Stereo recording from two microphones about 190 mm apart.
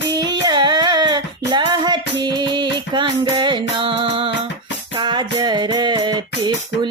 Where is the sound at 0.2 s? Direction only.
20° right (ahead or behind).